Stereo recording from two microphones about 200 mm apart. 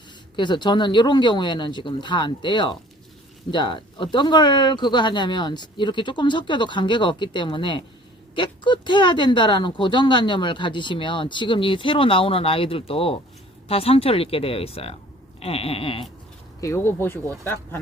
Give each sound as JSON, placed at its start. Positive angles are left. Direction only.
{"t": 0.3, "sound": "speech", "side_deg": 20}
{"t": 16.6, "sound": "speech", "side_deg": 15}